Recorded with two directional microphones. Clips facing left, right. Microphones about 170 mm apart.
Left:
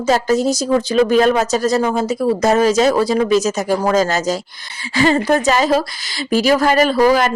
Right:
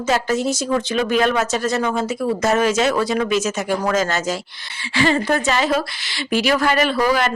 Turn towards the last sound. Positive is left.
turn(degrees=40)  # may be behind; listen again after turning